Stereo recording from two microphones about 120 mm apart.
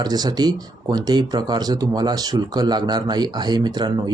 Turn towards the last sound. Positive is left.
turn(degrees=-35)  # may be behind; listen again after turning